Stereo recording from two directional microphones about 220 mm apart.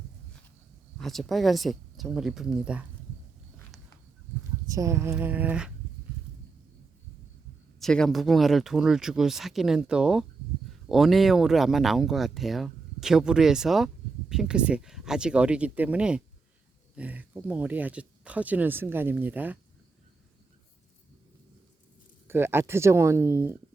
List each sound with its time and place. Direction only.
0.9 s speech: centre (ahead or behind)
4.7 s speech: 15° right (ahead or behind)
7.8 s speech: centre (ahead or behind)
22.3 s speech: 10° right (ahead or behind)